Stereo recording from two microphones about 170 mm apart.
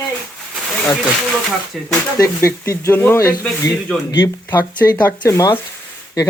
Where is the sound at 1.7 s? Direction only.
Centre (ahead or behind).